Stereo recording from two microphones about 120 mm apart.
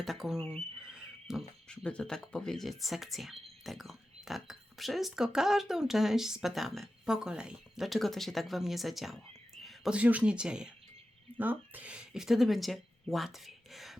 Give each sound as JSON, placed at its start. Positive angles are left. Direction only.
{"t": 0.0, "sound": "speech", "side_deg": 0}
{"t": 0.3, "sound": "speech", "side_deg": 20}
{"t": 0.9, "sound": "wild animals", "side_deg": -5}
{"t": 1.6, "sound": "speech", "side_deg": 10}
{"t": 9.6, "sound": "whispering", "side_deg": 0}
{"t": 9.9, "sound": "speech", "side_deg": -10}